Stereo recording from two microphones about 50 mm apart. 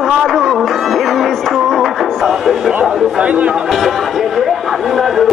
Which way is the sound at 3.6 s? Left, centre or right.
Centre.